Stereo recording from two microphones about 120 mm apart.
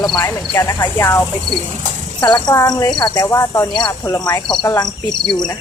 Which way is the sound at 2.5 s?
30° left (ahead or behind).